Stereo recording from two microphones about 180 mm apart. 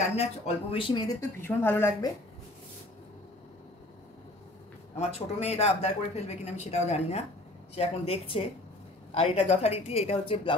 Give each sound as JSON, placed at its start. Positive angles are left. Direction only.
{"t": 0.0, "sound": "speech", "side_deg": 35}
{"t": 1.4, "sound": "a woman's voice", "side_deg": 15}
{"t": 4.9, "sound": "speech", "side_deg": 35}